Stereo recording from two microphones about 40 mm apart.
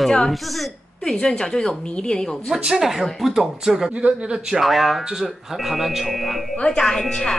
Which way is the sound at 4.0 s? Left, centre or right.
Right.